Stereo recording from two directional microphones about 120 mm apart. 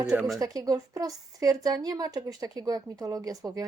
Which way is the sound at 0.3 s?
30° right (ahead or behind).